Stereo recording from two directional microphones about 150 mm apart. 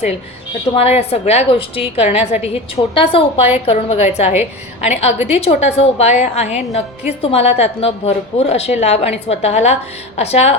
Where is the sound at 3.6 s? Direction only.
45° left (ahead or behind).